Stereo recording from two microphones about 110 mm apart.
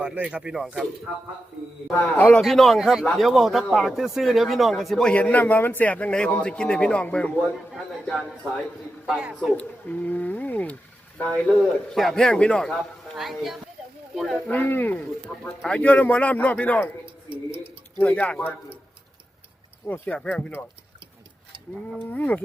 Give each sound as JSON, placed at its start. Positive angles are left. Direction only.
{"t": 0.0, "sound": "speech", "side_deg": -10}
{"t": 2.0, "sound": "a man's voice", "side_deg": 15}
{"t": 2.4, "sound": "speech", "side_deg": 0}
{"t": 5.1, "sound": "a man's voice", "side_deg": 15}
{"t": 9.0, "sound": "speech", "side_deg": -5}
{"t": 9.6, "sound": "a man's voice", "side_deg": 15}
{"t": 13.1, "sound": "speech", "side_deg": 0}
{"t": 14.5, "sound": "a man's voice", "side_deg": 20}
{"t": 17.9, "sound": "a man's voice", "side_deg": 15}
{"t": 19.9, "sound": "a man's voice", "side_deg": 10}
{"t": 22.1, "sound": "a man's voice", "side_deg": 15}